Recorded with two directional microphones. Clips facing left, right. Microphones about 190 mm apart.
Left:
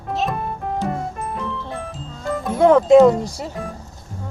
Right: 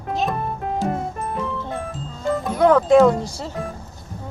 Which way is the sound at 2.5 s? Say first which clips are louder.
Left 3 dB; 25° left (ahead or behind).